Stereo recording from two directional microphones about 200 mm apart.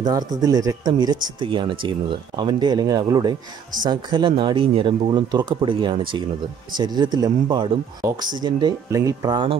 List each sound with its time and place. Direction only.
0.0 s speech: 20° right (ahead or behind)